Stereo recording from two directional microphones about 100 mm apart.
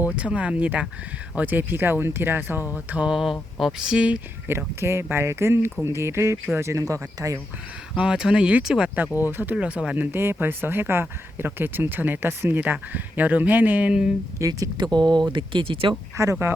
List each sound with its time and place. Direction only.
0.2 s speech: 10° right (ahead or behind)
4.4 s speech: 25° right (ahead or behind)
7.9 s speech: 10° right (ahead or behind)
9.0 s speech: 20° right (ahead or behind)
14.3 s speech: 35° right (ahead or behind)
14.9 s speech: 45° right (ahead or behind)
16.1 s speech: 30° right (ahead or behind)